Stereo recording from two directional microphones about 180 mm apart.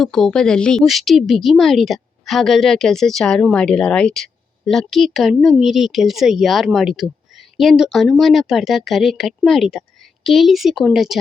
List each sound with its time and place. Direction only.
0.0 s a woman's voice: centre (ahead or behind)